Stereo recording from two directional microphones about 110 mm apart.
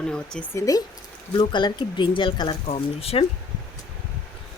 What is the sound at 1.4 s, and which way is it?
Speech, 45° left (ahead or behind).